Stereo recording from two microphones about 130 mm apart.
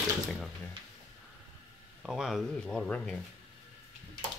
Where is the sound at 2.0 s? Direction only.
Centre (ahead or behind).